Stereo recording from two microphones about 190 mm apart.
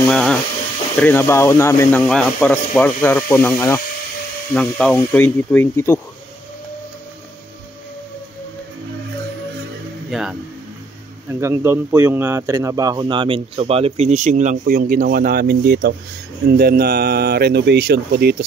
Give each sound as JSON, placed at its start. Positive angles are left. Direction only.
{"t": 0.0, "sound": "a sound", "side_deg": 5}
{"t": 0.9, "sound": "speech", "side_deg": 10}
{"t": 10.1, "sound": "speech", "side_deg": 0}
{"t": 11.2, "sound": "speech", "side_deg": -15}